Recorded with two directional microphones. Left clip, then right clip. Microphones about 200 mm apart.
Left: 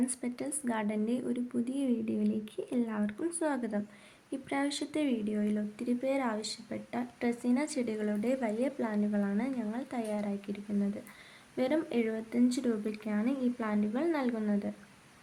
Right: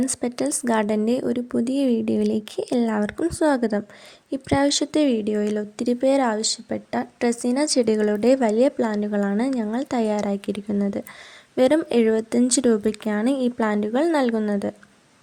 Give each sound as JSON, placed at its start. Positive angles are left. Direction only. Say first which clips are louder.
{"t": 0.2, "sound": "a woman's voice", "louder": "right 13 dB", "side_deg": -60}